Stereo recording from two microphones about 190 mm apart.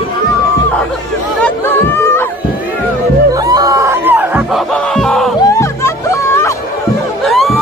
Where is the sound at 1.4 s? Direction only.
10° left (ahead or behind).